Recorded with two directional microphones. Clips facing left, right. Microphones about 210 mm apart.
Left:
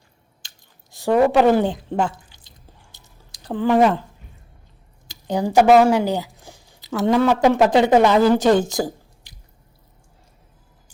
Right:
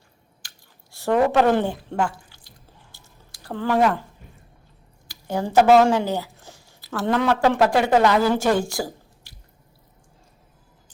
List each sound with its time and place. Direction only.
0.4 s squish: 15° left (ahead or behind)
2.9 s drip: 20° left (ahead or behind)
5.0 s a sound: 15° left (ahead or behind)
7.3 s speech: 15° left (ahead or behind)